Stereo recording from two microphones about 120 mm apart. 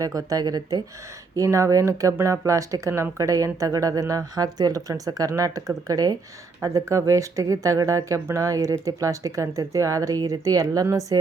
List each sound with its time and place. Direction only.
0.0 s speech: 30° right (ahead or behind)